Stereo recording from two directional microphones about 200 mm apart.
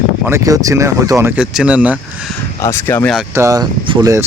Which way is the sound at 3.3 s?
15° right (ahead or behind).